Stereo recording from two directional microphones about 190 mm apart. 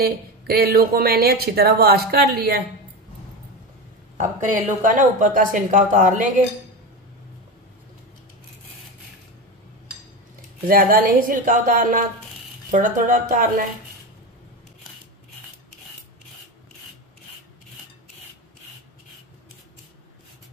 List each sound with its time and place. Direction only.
0.0 s speech: 55° right (ahead or behind)
4.2 s speech: 40° right (ahead or behind)
10.7 s speech: 50° right (ahead or behind)